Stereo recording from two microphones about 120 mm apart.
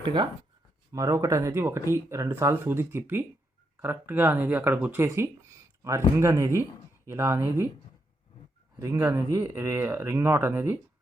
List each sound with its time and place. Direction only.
0.0 s speech: 40° right (ahead or behind)
0.9 s speech: 25° right (ahead or behind)
8.8 s speech: 30° right (ahead or behind)